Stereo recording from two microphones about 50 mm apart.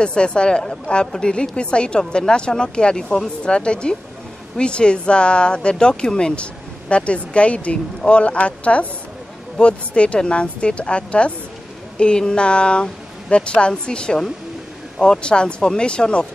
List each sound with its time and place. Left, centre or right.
0.0 s speech: centre